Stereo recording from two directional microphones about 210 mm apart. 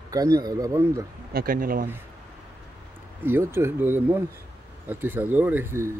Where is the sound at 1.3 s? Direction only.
45° right (ahead or behind).